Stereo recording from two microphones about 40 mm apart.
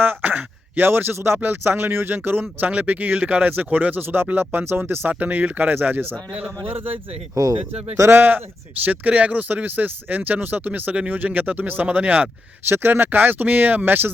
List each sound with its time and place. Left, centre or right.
0.0 s a sound: right
0.9 s speech: right
1.4 s speech: right
2.1 s speech: right
4.0 s speech: right
4.3 s speech: right
4.6 s speech: right
5.2 s speech: right
8.1 s speech: right
8.8 s speech: right
12.6 s speech: right
13.1 s speech: right